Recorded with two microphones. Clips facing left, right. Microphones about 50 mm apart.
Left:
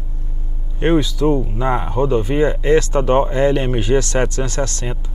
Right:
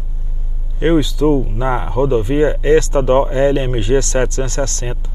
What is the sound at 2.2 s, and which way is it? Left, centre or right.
Speech, right.